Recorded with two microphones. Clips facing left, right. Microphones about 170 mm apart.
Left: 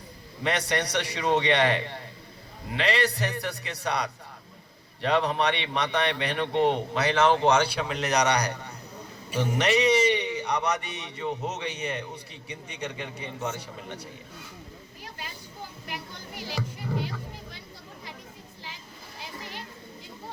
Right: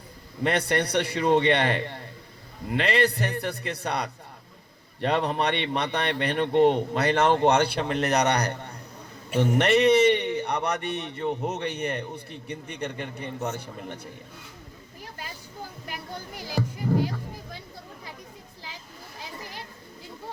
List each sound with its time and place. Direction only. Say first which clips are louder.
0.4 s a man's voice: right 3 dB; 55° right (ahead or behind)